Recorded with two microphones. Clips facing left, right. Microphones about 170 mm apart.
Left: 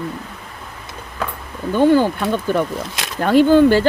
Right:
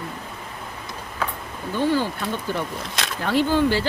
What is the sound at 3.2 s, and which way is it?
Speech, 50° left (ahead or behind).